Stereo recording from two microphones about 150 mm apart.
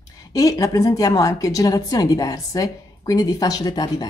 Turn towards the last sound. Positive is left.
turn(degrees=25)  # may be behind; listen again after turning